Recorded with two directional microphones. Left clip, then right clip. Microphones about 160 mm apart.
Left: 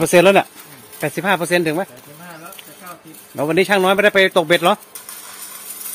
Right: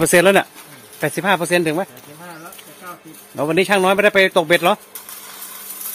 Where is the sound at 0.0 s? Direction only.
5° right (ahead or behind).